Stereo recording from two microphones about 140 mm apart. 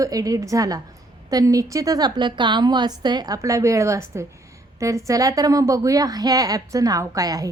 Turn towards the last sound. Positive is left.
turn(degrees=-25)  # may be behind; listen again after turning